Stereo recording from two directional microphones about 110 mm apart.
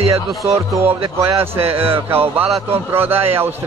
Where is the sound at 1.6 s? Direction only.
60° right (ahead or behind).